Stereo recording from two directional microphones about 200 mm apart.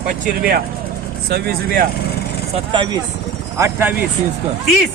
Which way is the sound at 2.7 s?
25° right (ahead or behind).